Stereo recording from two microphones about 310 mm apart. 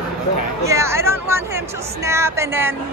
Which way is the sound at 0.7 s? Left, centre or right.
Centre.